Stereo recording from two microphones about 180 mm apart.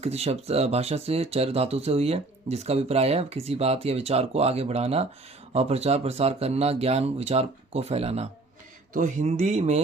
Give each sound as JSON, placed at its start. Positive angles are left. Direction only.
{"t": 0.0, "sound": "speech", "side_deg": -35}